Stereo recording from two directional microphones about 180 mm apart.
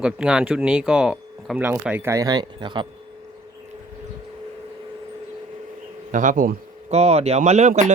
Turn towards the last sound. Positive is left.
turn(degrees=-40)  # may be behind; listen again after turning